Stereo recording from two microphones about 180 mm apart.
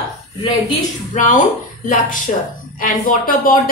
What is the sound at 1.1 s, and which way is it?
Speech, 50° left (ahead or behind).